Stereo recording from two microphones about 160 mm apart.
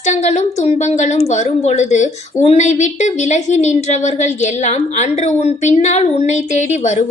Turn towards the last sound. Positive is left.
turn(degrees=50)  # may be behind; listen again after turning